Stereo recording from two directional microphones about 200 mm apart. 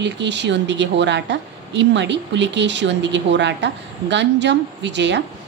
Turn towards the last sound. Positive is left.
turn(degrees=-60)  # may be behind; listen again after turning